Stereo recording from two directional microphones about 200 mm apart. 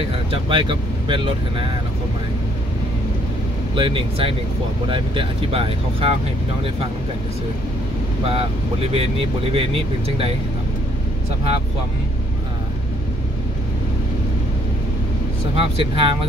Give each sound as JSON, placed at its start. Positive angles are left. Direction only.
{"t": 0.3, "sound": "speech", "side_deg": -25}
{"t": 3.7, "sound": "speech", "side_deg": -25}
{"t": 8.3, "sound": "speech", "side_deg": -30}
{"t": 15.5, "sound": "speech", "side_deg": -30}